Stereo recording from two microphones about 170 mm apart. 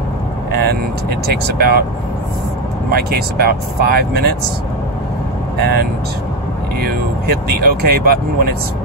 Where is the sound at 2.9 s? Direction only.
65° right (ahead or behind).